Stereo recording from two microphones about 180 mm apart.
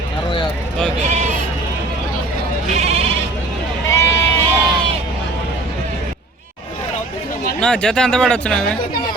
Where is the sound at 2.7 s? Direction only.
35° right (ahead or behind).